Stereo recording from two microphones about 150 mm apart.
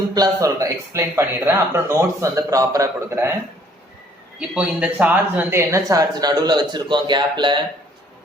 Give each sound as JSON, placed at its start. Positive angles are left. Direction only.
{"t": 0.1, "sound": "speech", "side_deg": -25}
{"t": 4.4, "sound": "speech", "side_deg": -10}